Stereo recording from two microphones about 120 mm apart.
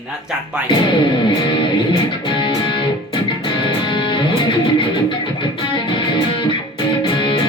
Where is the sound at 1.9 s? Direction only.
45° left (ahead or behind).